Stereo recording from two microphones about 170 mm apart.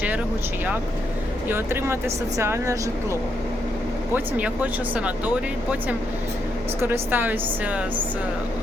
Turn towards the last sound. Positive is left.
turn(degrees=-10)  # may be behind; listen again after turning